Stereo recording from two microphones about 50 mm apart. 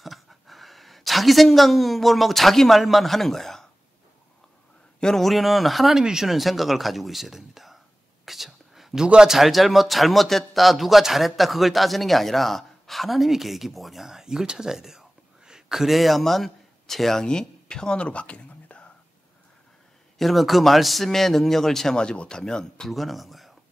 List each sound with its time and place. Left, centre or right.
0.0 s speech: centre
5.0 s speech: centre
5.9 s speech: centre
8.3 s whispering: centre
9.0 s a man's voice: centre
9.3 s speech: centre
18.0 s whispering: left
20.2 s a man's voice: centre
22.8 s speech: centre